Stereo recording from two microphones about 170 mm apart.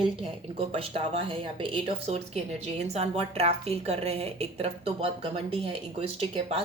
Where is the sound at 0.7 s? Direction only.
35° right (ahead or behind).